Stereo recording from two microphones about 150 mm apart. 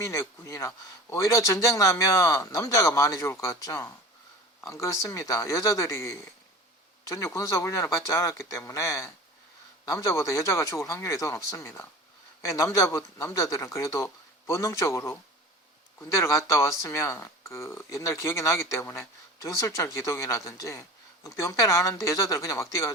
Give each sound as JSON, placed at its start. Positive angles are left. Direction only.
{"t": 0.0, "sound": "speech", "side_deg": 20}